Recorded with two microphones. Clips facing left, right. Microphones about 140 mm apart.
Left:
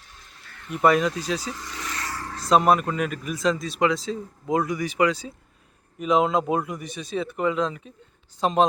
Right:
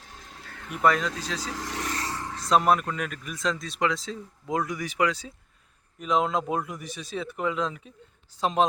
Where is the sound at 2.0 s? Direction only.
20° right (ahead or behind).